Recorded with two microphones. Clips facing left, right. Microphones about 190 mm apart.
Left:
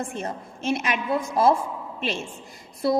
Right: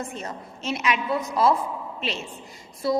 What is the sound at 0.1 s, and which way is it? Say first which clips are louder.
A woman's voice: left 3 dB; 55° left (ahead or behind).